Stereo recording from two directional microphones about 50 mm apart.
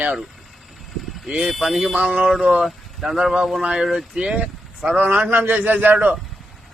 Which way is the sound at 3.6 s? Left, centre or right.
Centre.